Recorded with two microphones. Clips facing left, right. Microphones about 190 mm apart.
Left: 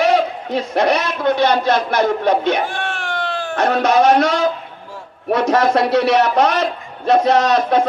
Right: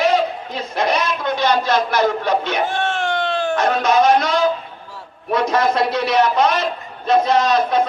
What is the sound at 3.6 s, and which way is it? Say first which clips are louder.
A man's voice: left 3 dB; 65° left (ahead or behind).